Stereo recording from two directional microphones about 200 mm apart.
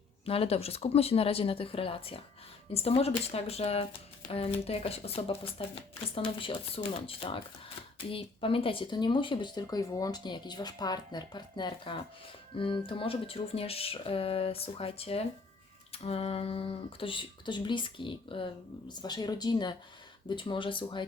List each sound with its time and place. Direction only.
0.3 s speech: 30° left (ahead or behind)